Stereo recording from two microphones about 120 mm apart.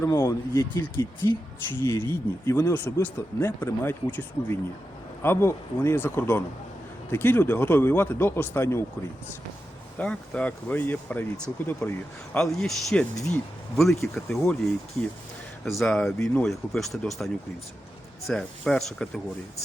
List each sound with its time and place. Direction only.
0.0 s speech: 25° left (ahead or behind)
10.0 s speech: 10° left (ahead or behind)
15.8 s speech: 5° left (ahead or behind)
18.3 s speech: 5° left (ahead or behind)